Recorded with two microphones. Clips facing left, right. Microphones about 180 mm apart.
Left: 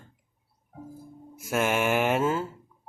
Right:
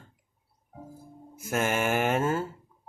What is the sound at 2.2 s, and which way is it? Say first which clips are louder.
Speech: left 1 dB; 55° right (ahead or behind).